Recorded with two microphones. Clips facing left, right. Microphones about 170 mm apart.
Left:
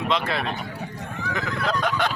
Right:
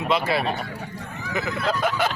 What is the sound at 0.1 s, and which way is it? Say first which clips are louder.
Honk: right 5 dB; 5° right (ahead or behind).